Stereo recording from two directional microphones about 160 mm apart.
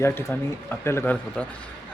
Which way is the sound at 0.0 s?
15° left (ahead or behind).